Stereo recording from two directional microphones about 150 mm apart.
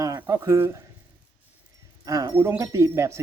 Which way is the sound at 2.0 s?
25° right (ahead or behind).